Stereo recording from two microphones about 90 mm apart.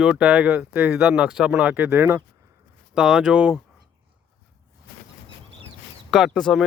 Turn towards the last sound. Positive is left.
turn(degrees=5)  # may be behind; listen again after turning